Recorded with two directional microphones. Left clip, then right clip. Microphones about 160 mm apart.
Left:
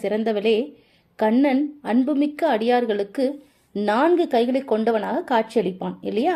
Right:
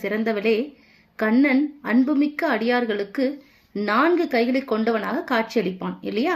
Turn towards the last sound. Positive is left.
turn(degrees=30)  # may be behind; listen again after turning